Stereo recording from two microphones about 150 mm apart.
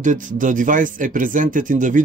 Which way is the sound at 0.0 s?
60° right (ahead or behind).